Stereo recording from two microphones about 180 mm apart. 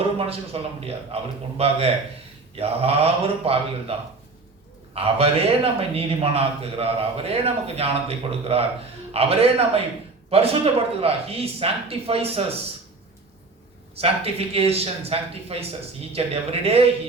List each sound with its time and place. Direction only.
0.2 s a man's voice: 30° right (ahead or behind)
4.9 s a man's voice: 35° right (ahead or behind)
14.0 s a man's voice: 35° right (ahead or behind)